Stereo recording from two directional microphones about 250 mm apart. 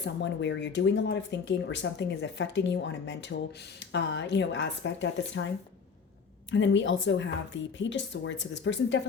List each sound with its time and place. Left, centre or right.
0.0 s speech: left
6.5 s speech: left